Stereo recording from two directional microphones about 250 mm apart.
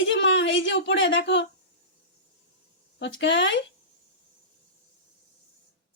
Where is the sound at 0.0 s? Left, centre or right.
Left.